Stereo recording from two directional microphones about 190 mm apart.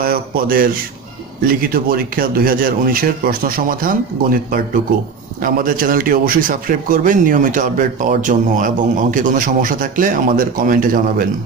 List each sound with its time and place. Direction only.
0.0 s a man's voice: 50° right (ahead or behind)